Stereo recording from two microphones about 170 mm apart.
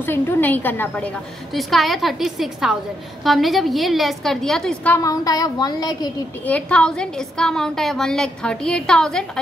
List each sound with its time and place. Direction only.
0.0 s a woman's voice: 10° left (ahead or behind)
5.0 s a sound: 20° left (ahead or behind)
6.4 s a woman's voice: 5° left (ahead or behind)